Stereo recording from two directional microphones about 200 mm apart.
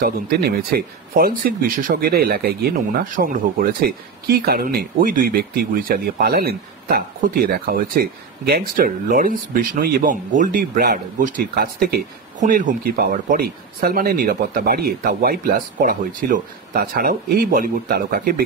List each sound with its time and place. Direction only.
0.0 s speech: 50° right (ahead or behind)